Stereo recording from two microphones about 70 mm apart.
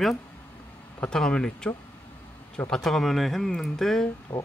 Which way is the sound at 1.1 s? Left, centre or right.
Centre.